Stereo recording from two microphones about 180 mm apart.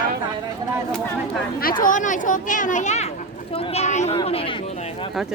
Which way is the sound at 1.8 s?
45° left (ahead or behind).